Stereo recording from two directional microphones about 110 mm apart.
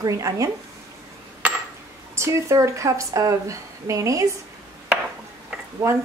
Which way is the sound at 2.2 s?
25° right (ahead or behind).